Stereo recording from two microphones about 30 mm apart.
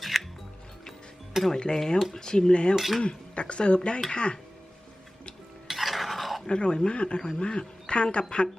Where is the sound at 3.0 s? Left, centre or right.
Left.